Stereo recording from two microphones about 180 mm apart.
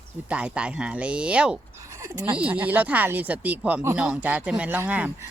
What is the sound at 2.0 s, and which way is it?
Speech, 20° right (ahead or behind).